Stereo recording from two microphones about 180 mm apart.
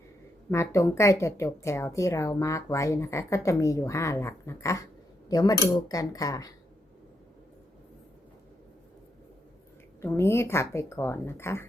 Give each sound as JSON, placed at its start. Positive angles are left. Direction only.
{"t": 0.5, "sound": "a woman's voice", "side_deg": 15}
{"t": 10.0, "sound": "a woman's voice", "side_deg": 15}